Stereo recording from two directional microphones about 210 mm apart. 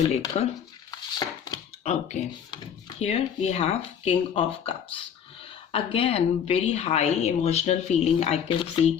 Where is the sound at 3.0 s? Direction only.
30° left (ahead or behind).